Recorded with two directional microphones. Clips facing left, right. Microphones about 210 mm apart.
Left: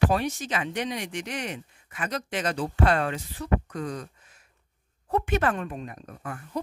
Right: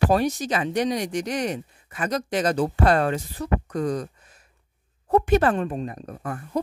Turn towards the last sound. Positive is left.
turn(degrees=-40)  # may be behind; listen again after turning